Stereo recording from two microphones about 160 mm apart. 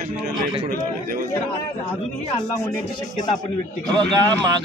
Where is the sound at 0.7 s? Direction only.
65° right (ahead or behind).